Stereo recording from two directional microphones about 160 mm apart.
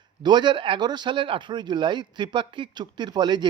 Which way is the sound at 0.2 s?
30° right (ahead or behind).